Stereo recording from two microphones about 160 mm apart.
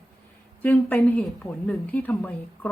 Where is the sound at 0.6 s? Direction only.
15° left (ahead or behind).